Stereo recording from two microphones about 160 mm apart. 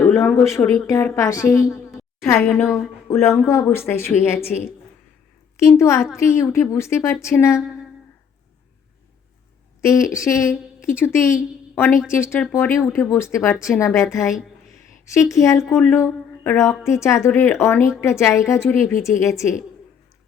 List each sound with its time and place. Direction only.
0.0 s a woman's voice: 10° left (ahead or behind)
2.0 s a sound: 15° left (ahead or behind)
2.4 s a woman's voice: 5° left (ahead or behind)
3.1 s a woman's voice: 15° left (ahead or behind)
9.8 s a woman's voice: 20° left (ahead or behind)